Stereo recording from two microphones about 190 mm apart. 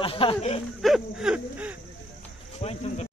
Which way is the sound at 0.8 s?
Centre (ahead or behind).